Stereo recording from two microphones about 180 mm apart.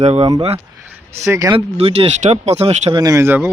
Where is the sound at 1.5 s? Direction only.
35° right (ahead or behind).